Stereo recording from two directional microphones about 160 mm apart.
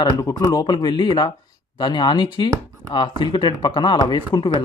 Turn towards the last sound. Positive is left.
turn(degrees=30)  # may be behind; listen again after turning